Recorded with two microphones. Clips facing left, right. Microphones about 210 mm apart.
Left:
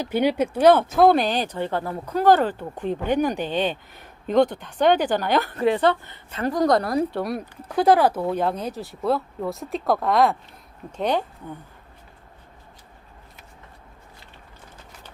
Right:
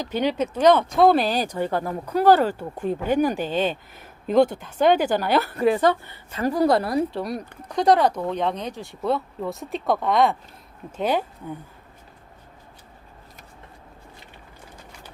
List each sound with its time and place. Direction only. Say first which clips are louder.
0.0 s a woman's voice: left 2 dB; 10° left (ahead or behind); by 11.3 s 5° right (ahead or behind)